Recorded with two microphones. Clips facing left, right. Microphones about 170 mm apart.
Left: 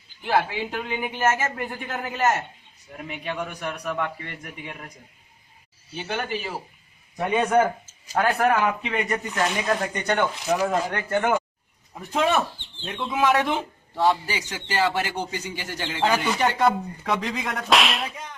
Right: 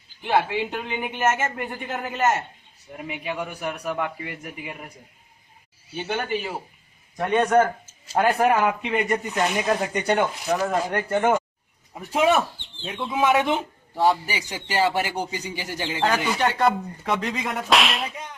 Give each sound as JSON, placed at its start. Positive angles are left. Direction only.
{"t": 0.2, "sound": "speech", "side_deg": 0}
{"t": 6.0, "sound": "speech", "side_deg": -10}
{"t": 7.2, "sound": "speech", "side_deg": 5}
{"t": 8.2, "sound": "speech", "side_deg": -10}
{"t": 10.5, "sound": "speech", "side_deg": 5}
{"t": 13.9, "sound": "speech", "side_deg": -15}
{"t": 16.3, "sound": "speech", "side_deg": 0}